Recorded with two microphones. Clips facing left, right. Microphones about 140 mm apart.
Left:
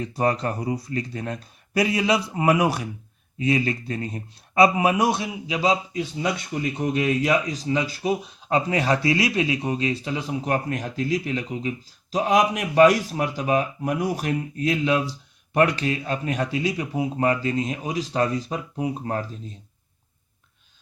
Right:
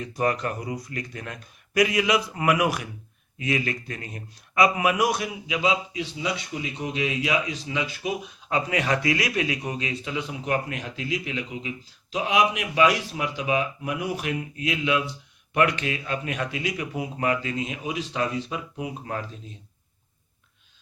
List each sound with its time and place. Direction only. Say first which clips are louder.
0.0 s a man's voice: left 2 dB; 30° left (ahead or behind)